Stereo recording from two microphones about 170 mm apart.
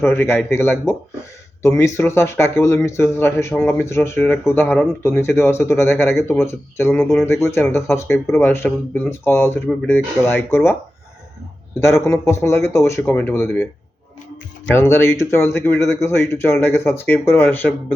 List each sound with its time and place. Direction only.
0.0 s speech: 15° left (ahead or behind)
11.8 s speech: 15° left (ahead or behind)
14.8 s speech: 15° left (ahead or behind)